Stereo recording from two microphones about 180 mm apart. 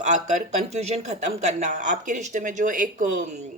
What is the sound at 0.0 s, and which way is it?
A woman's voice, 40° right (ahead or behind).